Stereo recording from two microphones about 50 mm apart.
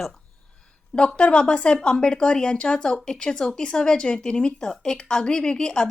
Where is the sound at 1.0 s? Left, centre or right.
Centre.